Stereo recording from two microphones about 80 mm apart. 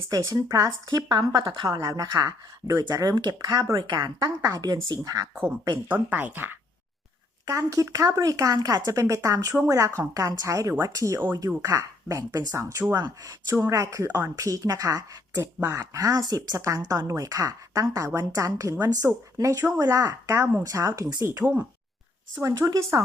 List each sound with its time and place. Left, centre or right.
0.1 s speech: right
3.2 s speech: right
3.8 s a woman's voice: right
4.5 s speech: right
5.9 s speech: right
7.4 s a woman's voice: right
16.6 s speech: right
20.4 s speech: right
20.7 s a woman's voice: right